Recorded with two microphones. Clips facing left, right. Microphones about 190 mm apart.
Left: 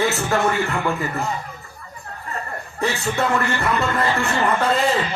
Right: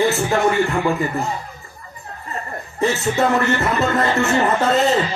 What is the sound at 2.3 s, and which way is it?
Speech, 20° right (ahead or behind).